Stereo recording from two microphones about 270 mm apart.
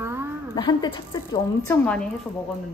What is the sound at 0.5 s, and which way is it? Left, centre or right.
Speech, centre.